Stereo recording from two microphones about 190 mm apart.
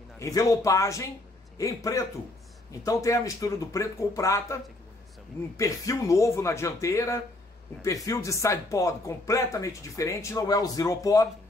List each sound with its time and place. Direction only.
0.2 s speech: 15° left (ahead or behind)
5.6 s speech: 15° left (ahead or behind)